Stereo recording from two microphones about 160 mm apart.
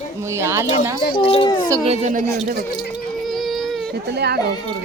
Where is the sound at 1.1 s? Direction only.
35° left (ahead or behind).